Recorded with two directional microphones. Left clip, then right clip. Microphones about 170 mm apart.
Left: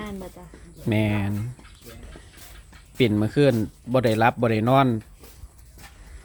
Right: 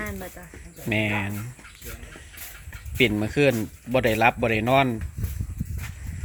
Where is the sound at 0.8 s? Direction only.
35° left (ahead or behind).